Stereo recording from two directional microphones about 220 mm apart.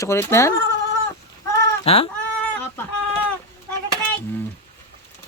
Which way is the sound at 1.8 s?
25° left (ahead or behind).